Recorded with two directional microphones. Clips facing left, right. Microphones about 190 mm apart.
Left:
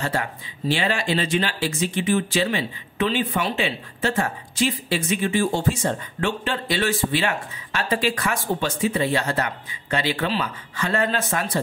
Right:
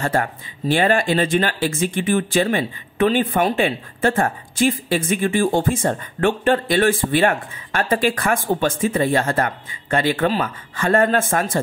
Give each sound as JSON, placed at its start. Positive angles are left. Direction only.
{"t": 0.0, "sound": "speech", "side_deg": -50}